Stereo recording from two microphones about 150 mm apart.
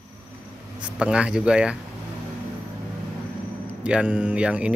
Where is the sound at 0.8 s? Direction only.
5° right (ahead or behind).